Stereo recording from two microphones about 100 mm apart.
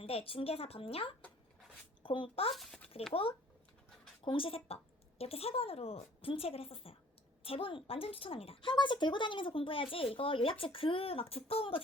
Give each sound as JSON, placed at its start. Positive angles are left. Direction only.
{"t": 0.0, "sound": "speech", "side_deg": 75}
{"t": 2.0, "sound": "speech", "side_deg": 60}
{"t": 8.7, "sound": "speech", "side_deg": 50}